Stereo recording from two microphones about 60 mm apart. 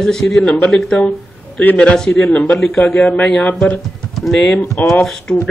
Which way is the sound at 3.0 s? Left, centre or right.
Left.